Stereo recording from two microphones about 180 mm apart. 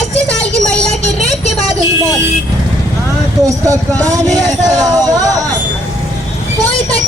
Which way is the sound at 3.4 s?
20° right (ahead or behind).